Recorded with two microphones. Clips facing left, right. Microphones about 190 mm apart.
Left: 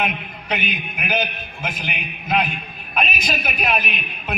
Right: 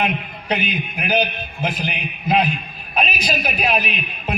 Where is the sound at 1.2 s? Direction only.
35° right (ahead or behind).